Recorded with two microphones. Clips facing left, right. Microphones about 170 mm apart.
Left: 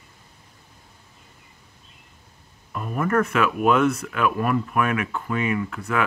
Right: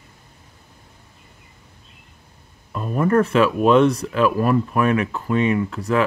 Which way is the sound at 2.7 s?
30° right (ahead or behind).